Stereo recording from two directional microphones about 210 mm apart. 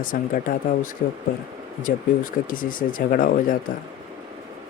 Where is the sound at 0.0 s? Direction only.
40° left (ahead or behind).